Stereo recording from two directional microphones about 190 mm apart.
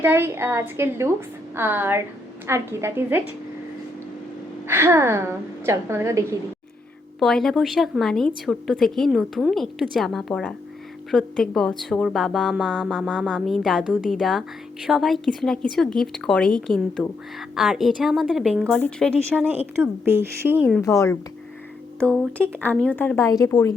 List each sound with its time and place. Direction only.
0.0 s a woman's voice: 10° right (ahead or behind)
4.7 s a woman's voice: 15° right (ahead or behind)
7.2 s music: centre (ahead or behind)
19.4 s a woman's voice: 10° right (ahead or behind)
20.8 s speech: 15° left (ahead or behind)
22.0 s speech: 5° left (ahead or behind)